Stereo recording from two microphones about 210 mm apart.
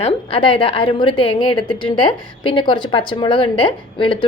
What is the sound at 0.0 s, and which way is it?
A woman's voice, 25° left (ahead or behind).